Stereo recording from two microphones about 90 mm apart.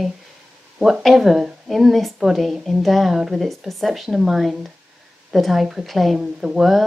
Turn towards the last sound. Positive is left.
turn(degrees=0)  # may be behind; listen again after turning